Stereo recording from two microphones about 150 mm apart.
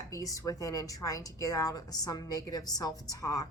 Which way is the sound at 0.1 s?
25° left (ahead or behind).